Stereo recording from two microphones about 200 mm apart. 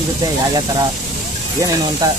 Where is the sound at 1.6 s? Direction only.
15° right (ahead or behind).